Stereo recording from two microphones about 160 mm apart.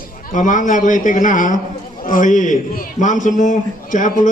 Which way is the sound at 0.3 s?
55° left (ahead or behind).